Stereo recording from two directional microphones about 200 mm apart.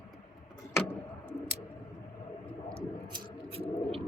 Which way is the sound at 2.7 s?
20° right (ahead or behind).